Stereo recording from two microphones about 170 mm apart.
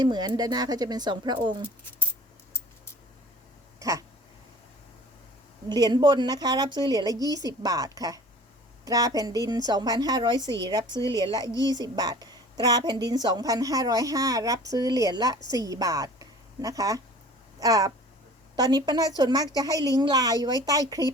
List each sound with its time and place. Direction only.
0.0 s a woman's voice: 25° right (ahead or behind)
3.8 s a sound: 20° right (ahead or behind)
5.6 s a woman's voice: 25° right (ahead or behind)